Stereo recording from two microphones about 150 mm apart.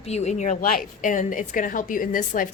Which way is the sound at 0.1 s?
50° left (ahead or behind).